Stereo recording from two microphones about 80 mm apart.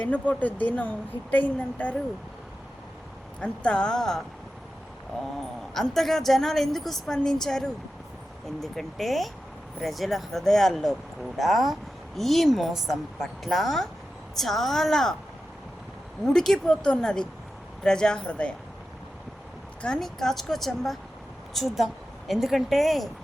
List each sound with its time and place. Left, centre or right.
0.0 s speech: centre
3.4 s speech: centre
5.7 s speech: centre
16.2 s speech: centre
20.0 s speech: centre